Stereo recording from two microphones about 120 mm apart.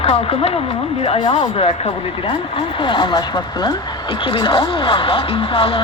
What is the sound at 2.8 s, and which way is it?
Speech, 40° left (ahead or behind).